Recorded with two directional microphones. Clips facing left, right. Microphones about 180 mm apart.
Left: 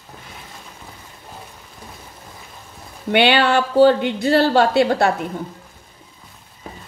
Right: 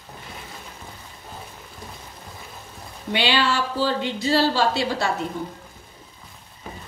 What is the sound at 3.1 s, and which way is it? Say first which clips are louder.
A woman's voice: left 7 dB; 60° left (ahead or behind).